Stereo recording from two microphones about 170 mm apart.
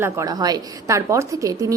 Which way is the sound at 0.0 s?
20° right (ahead or behind).